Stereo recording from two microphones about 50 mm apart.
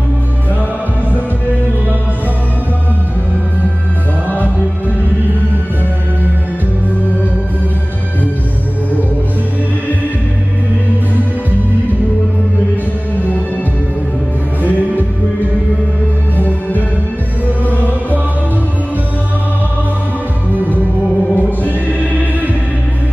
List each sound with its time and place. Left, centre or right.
14.6 s music: left
16.3 s music: left
21.4 s music: left